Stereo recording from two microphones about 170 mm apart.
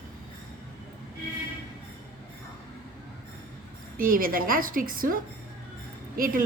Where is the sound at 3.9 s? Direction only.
55° right (ahead or behind).